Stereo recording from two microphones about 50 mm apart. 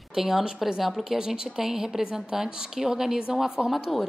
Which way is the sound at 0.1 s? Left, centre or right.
Centre.